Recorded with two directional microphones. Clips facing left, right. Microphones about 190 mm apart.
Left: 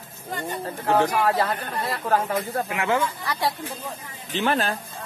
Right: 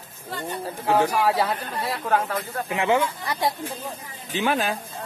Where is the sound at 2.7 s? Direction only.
25° right (ahead or behind).